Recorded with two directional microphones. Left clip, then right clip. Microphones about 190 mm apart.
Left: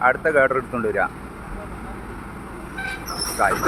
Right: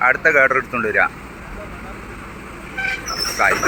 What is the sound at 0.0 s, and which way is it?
Speech, 5° left (ahead or behind).